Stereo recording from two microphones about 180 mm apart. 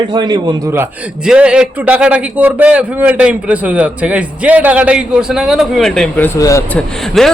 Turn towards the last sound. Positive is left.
turn(degrees=0)  # may be behind; listen again after turning